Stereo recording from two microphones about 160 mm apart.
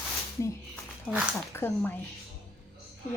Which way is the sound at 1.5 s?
15° left (ahead or behind).